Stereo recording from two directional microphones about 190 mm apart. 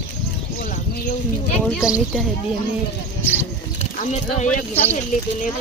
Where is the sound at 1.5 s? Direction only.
5° left (ahead or behind).